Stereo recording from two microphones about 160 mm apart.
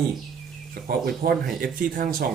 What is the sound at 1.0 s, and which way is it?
Speech, 70° right (ahead or behind).